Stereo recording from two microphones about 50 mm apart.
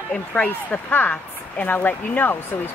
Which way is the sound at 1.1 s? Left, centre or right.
Left.